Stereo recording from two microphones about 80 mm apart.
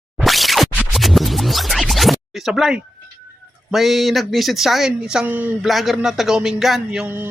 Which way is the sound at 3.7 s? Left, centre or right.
Centre.